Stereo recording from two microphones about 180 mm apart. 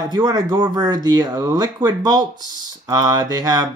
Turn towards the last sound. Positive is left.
turn(degrees=-20)  # may be behind; listen again after turning